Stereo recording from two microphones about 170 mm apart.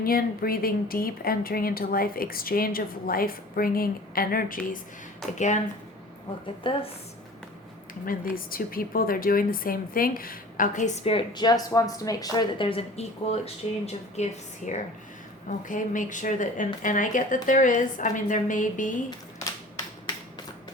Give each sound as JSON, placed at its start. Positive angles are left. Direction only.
{"t": 0.0, "sound": "speech", "side_deg": 60}
{"t": 5.4, "sound": "a woman's voice", "side_deg": 45}
{"t": 6.6, "sound": "a woman's voice", "side_deg": 30}
{"t": 8.0, "sound": "a woman's voice", "side_deg": 55}